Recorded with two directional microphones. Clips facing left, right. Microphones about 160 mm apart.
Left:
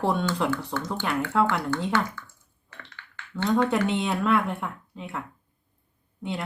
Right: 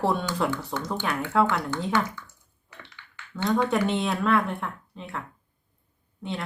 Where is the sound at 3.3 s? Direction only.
Centre (ahead or behind).